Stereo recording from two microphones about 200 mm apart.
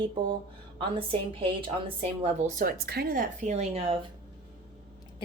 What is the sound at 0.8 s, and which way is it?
A woman's voice, 25° right (ahead or behind).